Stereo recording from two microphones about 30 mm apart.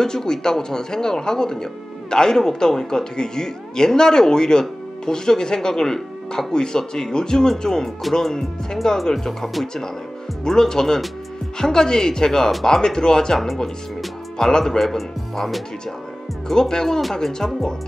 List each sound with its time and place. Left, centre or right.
0.0 s speech: left
14.4 s speech: centre
16.4 s speech: left